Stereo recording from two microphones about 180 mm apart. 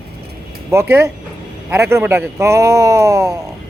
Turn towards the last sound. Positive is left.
turn(degrees=-20)  # may be behind; listen again after turning